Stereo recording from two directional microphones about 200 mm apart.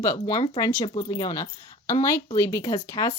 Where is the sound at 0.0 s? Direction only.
15° left (ahead or behind).